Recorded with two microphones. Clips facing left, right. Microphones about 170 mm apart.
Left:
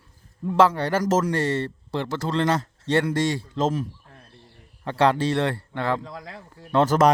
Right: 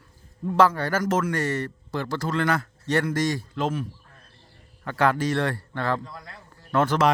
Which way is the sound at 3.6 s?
40° left (ahead or behind).